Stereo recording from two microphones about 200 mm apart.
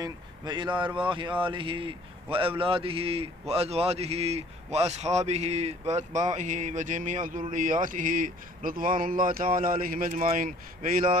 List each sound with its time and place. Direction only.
0.0 s speech: 20° right (ahead or behind); by 11.1 s 45° right (ahead or behind)